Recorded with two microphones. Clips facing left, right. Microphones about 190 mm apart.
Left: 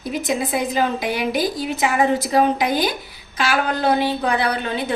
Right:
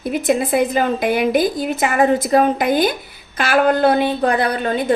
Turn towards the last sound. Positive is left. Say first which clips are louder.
# right 3 dB
turn(degrees=-50)  # may be behind; listen again after turning